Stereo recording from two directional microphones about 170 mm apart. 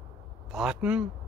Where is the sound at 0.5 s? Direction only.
5° right (ahead or behind).